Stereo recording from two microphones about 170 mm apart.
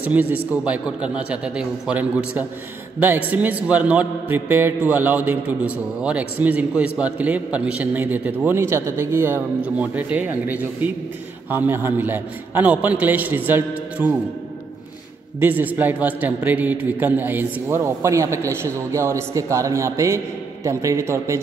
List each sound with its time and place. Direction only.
0.1 s a man's voice: 10° right (ahead or behind)
15.4 s a man's voice: 10° right (ahead or behind)